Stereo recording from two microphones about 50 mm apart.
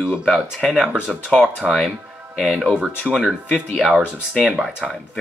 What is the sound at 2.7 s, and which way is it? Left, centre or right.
Speech, right.